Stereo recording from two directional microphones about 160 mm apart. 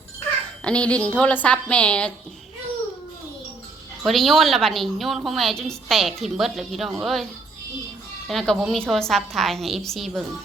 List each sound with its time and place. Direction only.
0.6 s speech: 5° left (ahead or behind)
4.0 s a woman's voice: centre (ahead or behind)
8.3 s a woman's voice: centre (ahead or behind)